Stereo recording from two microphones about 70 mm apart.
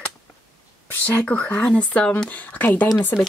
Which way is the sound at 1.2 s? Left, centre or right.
Left.